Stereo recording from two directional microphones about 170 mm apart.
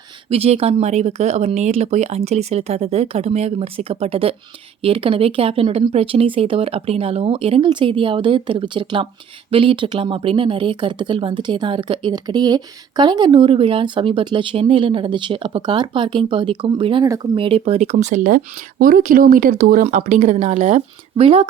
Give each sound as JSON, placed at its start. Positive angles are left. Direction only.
{"t": 0.3, "sound": "speech", "side_deg": -35}